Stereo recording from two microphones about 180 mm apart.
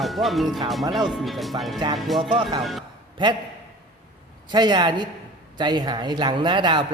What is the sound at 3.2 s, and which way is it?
Speech, 25° right (ahead or behind).